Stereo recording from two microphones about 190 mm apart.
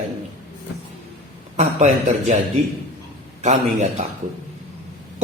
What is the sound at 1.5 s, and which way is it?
Speech, 35° right (ahead or behind).